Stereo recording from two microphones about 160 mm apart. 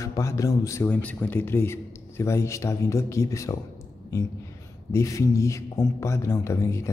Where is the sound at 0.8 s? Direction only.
10° left (ahead or behind).